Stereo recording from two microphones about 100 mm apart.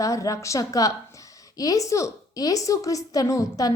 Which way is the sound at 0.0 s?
35° left (ahead or behind).